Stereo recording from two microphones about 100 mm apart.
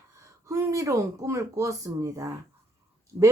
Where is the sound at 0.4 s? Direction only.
30° right (ahead or behind).